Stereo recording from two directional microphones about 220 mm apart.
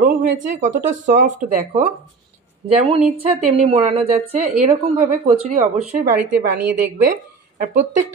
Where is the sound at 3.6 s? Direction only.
25° right (ahead or behind).